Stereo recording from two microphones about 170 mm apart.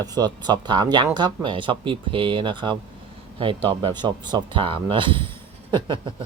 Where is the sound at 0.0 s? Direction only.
25° right (ahead or behind).